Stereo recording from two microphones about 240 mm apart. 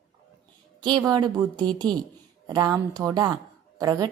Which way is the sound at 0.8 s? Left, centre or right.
Centre.